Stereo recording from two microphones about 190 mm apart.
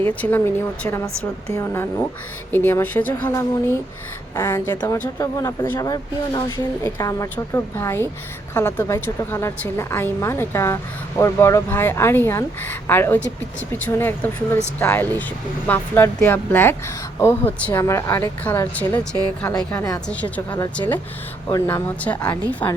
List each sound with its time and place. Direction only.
0.2 s speech: 10° left (ahead or behind)